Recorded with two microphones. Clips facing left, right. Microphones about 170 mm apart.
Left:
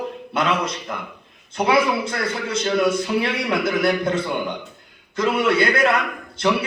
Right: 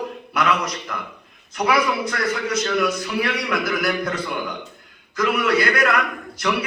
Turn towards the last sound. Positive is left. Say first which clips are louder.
# left 3 dB
turn(degrees=25)  # may be behind; listen again after turning